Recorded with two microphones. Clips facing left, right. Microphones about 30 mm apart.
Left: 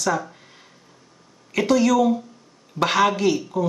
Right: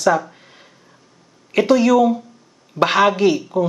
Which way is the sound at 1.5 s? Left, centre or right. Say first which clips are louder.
Right 4 dB; centre.